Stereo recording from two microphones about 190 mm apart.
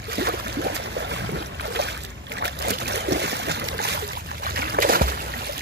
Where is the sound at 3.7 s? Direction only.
60° right (ahead or behind).